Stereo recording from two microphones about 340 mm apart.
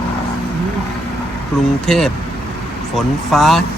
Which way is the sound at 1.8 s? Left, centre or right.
Centre.